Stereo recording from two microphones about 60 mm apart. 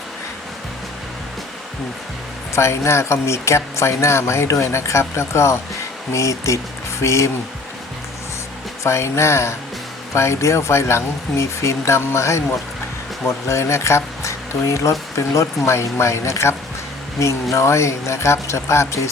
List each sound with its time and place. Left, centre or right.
2.6 s speech: left
8.8 s speech: left